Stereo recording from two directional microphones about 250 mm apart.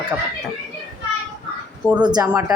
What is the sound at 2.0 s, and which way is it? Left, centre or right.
Speech, centre.